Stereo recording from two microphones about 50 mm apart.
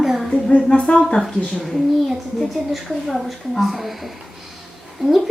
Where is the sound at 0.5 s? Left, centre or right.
Left.